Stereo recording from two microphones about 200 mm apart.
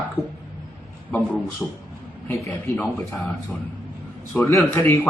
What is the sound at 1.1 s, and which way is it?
A man's voice, 10° left (ahead or behind).